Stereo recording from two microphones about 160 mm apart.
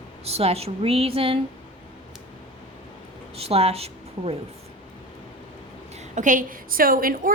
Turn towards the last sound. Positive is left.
turn(degrees=-60)  # may be behind; listen again after turning